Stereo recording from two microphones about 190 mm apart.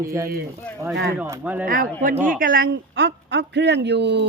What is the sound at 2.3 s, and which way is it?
A woman's voice, 45° right (ahead or behind).